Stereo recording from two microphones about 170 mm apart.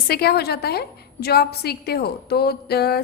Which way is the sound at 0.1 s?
70° left (ahead or behind).